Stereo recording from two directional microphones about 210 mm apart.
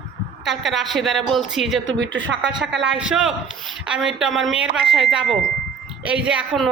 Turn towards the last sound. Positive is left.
turn(degrees=-5)  # may be behind; listen again after turning